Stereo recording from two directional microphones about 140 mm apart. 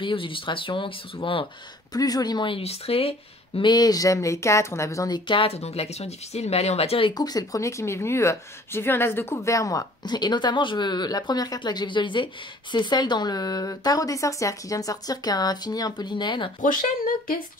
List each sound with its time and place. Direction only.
0.0 s speech: 40° left (ahead or behind)
2.0 s speech: 25° left (ahead or behind)
16.6 s speech: 75° left (ahead or behind)